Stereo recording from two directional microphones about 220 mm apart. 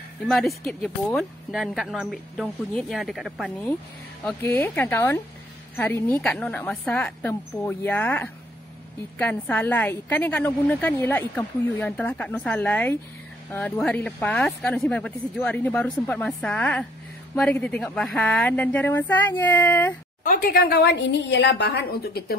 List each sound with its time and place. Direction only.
0.3 s a woman's voice: centre (ahead or behind)
20.2 s a woman's voice: 40° left (ahead or behind)